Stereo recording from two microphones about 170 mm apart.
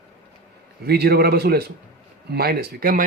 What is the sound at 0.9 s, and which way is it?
A man's voice, 65° right (ahead or behind).